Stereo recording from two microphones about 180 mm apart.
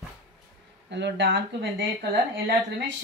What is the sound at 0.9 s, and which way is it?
Speech, 75° right (ahead or behind).